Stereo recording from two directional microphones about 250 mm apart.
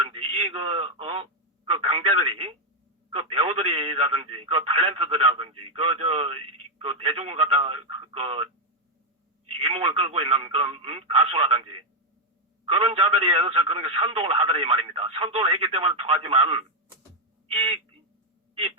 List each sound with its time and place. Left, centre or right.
0.0 s a man's voice: right
9.5 s a man's voice: right
17.5 s a sound: right